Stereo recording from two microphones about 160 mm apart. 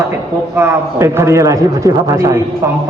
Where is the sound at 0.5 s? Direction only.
15° right (ahead or behind).